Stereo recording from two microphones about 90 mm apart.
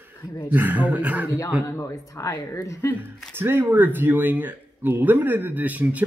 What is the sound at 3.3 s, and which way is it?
Speech, 25° right (ahead or behind).